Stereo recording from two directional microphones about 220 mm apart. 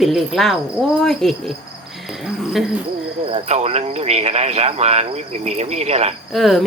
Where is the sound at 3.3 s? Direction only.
30° right (ahead or behind).